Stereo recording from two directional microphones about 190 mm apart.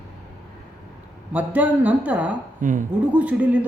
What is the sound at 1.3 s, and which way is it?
A man's voice, 10° right (ahead or behind).